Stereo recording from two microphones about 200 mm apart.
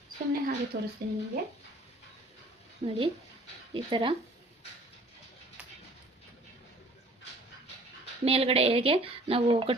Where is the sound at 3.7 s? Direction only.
25° right (ahead or behind).